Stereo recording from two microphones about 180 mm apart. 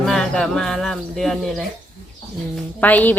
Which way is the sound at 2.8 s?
10° left (ahead or behind).